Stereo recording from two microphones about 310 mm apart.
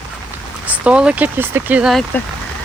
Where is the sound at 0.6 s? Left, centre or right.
Centre.